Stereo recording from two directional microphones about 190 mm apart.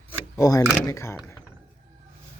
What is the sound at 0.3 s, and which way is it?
Speech, 15° left (ahead or behind).